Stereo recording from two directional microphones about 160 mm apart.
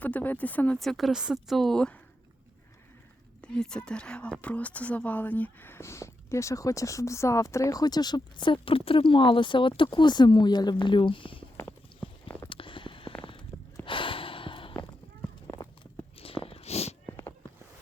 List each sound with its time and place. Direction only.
0.0 s speech: 10° left (ahead or behind)
3.4 s a woman's voice: 5° left (ahead or behind); by 11.4 s 30° left (ahead or behind)
11.5 s clip-clop: 15° left (ahead or behind)
12.5 s a sound: 35° left (ahead or behind)
13.8 s gasp: 30° left (ahead or behind)
15.8 s walk: 35° left (ahead or behind)
17.1 s a sound: 20° left (ahead or behind)